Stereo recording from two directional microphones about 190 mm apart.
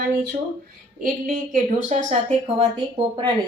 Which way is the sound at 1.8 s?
40° right (ahead or behind).